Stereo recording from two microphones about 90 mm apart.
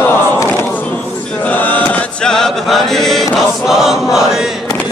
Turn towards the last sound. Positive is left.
turn(degrees=-5)  # may be behind; listen again after turning